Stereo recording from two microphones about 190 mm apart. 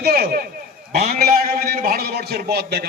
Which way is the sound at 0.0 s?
55° right (ahead or behind).